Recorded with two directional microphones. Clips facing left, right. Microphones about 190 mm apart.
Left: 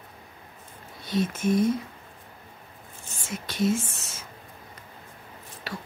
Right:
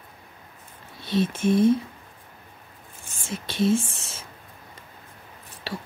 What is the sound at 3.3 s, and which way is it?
Speech, 30° right (ahead or behind).